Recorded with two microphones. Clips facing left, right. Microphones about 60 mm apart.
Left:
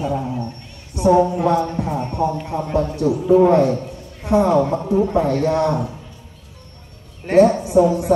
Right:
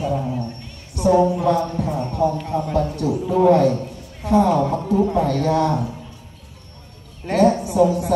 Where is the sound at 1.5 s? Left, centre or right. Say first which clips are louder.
Left 2 dB; left.